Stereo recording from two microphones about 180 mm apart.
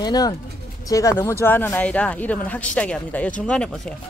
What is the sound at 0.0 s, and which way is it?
Speech, 20° left (ahead or behind).